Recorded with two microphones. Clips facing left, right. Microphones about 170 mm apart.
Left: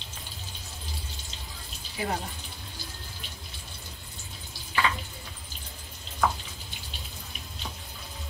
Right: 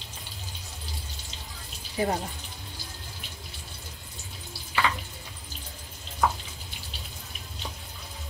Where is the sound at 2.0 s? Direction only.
35° right (ahead or behind).